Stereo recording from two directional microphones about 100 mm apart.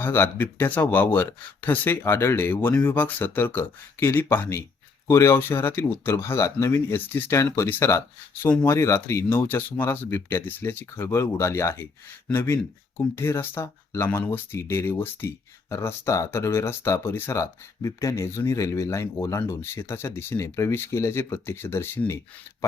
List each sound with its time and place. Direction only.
0.0 s speech: 20° left (ahead or behind)